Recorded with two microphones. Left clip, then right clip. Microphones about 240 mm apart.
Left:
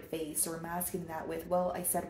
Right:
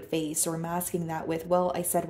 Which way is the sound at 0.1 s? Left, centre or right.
Right.